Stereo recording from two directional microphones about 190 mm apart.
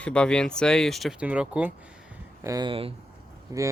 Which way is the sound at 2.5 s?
20° right (ahead or behind).